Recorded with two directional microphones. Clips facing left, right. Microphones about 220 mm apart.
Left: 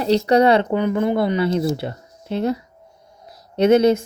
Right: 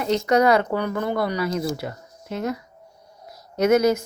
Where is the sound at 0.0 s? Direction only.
35° left (ahead or behind).